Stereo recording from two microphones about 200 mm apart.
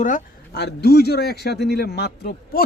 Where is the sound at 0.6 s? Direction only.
55° left (ahead or behind).